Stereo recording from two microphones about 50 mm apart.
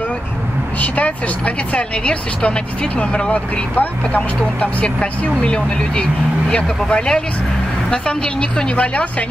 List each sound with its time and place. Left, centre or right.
0.7 s speech: left
3.7 s speech: left